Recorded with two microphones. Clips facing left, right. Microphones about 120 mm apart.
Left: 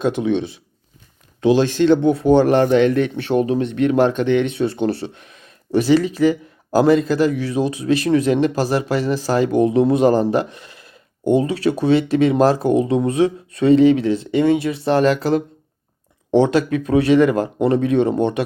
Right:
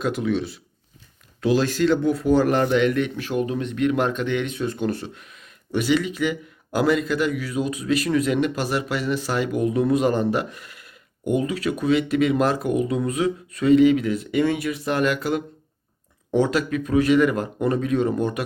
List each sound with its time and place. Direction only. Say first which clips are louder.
1.4 s speech: left 5 dB; 25° left (ahead or behind)